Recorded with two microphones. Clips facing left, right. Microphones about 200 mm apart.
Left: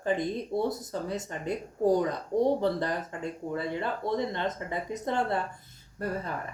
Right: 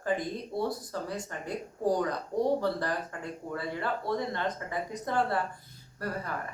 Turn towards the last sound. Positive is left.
turn(degrees=20)  # may be behind; listen again after turning